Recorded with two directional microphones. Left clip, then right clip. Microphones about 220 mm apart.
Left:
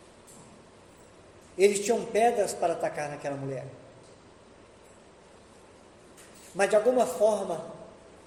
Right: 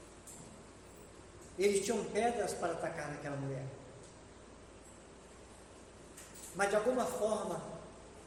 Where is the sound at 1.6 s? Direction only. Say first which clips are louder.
Left 9 dB; 30° left (ahead or behind).